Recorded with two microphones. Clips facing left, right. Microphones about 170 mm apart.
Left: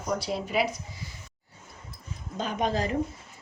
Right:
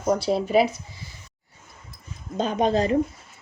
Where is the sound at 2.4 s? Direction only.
25° right (ahead or behind).